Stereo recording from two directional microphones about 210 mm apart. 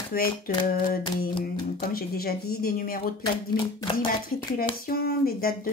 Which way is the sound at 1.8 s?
45° left (ahead or behind).